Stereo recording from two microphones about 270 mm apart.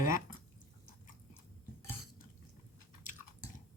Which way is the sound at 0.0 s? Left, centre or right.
Left.